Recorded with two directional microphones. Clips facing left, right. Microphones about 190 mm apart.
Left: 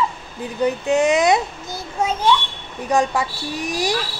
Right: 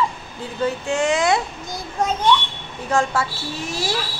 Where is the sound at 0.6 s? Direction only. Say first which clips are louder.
Left 4 dB; 20° left (ahead or behind).